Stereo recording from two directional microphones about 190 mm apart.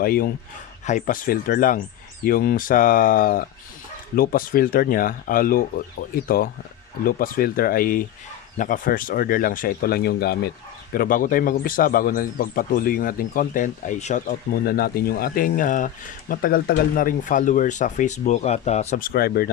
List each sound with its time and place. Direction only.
0.0 s a man's voice: 50° left (ahead or behind)